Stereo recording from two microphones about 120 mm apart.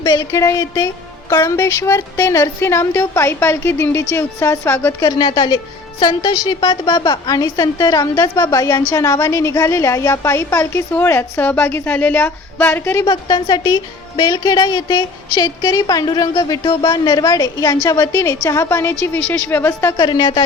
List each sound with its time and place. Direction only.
0.0 s a woman's voice: 30° left (ahead or behind)
4.9 s a woman's voice: 35° left (ahead or behind); by 13.1 s 20° left (ahead or behind)
13.1 s a woman's voice: 35° left (ahead or behind); by 19.9 s 20° left (ahead or behind)
20.0 s a woman's voice: 35° left (ahead or behind)